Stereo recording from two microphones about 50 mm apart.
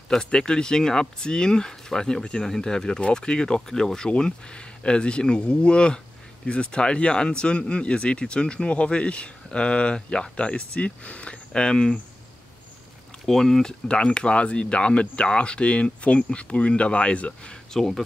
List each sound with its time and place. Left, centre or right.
0.2 s speech: centre
13.2 s speech: centre
17.7 s speech: centre